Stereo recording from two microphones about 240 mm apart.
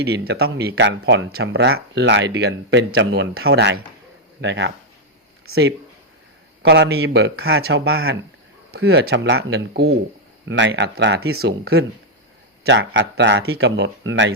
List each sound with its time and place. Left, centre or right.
0.0 s speech: right
6.6 s speech: right